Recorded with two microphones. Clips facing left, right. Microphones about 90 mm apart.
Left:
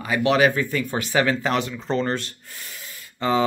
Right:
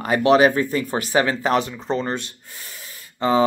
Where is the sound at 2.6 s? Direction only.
30° right (ahead or behind).